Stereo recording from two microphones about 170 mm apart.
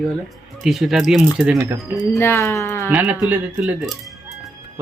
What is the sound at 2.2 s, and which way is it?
Speech, 15° left (ahead or behind).